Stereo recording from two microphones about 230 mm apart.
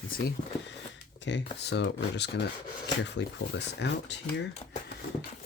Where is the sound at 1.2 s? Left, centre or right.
Left.